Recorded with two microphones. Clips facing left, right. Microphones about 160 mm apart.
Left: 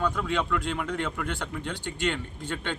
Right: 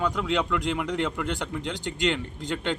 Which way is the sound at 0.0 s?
15° right (ahead or behind).